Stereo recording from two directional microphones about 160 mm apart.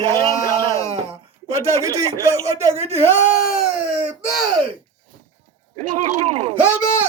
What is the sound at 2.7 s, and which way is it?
Speech, 40° right (ahead or behind).